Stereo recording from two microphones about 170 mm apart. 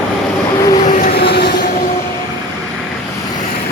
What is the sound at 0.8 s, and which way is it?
Vehicle, 50° left (ahead or behind).